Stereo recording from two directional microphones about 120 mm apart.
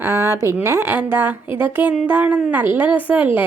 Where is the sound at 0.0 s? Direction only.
20° right (ahead or behind).